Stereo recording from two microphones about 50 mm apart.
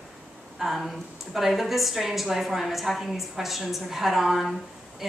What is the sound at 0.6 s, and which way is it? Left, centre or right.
A woman's voice, centre.